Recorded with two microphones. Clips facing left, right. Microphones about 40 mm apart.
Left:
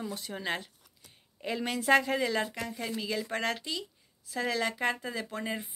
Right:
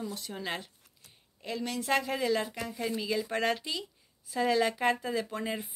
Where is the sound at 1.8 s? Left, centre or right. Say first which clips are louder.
Left 4 dB; centre.